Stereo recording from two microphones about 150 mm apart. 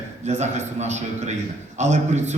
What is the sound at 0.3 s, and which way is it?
A man's voice, 50° right (ahead or behind).